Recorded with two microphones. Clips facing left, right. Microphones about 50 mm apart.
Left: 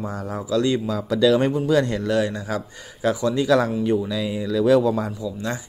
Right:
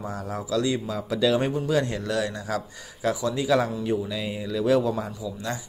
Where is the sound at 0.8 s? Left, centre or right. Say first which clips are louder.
Left 5 dB; left.